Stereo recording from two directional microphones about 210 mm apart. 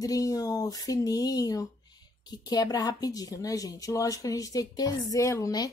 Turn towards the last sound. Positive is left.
turn(degrees=15)  # may be behind; listen again after turning